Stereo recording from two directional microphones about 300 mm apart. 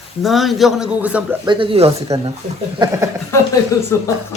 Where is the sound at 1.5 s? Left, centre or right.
Centre.